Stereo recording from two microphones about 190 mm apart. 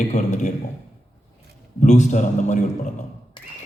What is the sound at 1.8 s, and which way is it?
A man's voice, 40° left (ahead or behind).